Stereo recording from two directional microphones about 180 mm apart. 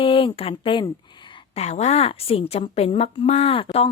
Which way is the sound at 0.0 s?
30° left (ahead or behind).